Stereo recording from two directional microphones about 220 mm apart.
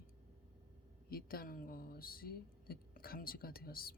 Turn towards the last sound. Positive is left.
turn(degrees=45)  # may be behind; listen again after turning